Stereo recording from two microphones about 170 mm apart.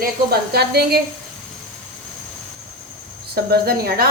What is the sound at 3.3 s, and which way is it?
Speech, 65° right (ahead or behind).